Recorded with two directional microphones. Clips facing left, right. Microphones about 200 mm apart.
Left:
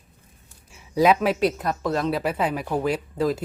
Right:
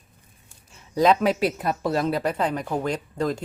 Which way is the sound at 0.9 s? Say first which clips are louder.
Even; 5° left (ahead or behind).